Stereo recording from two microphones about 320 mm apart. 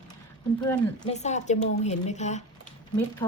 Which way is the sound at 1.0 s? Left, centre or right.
Left.